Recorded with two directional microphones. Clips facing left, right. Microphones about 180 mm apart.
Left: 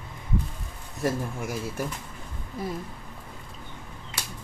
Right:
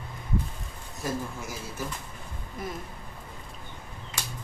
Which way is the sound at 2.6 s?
30° left (ahead or behind).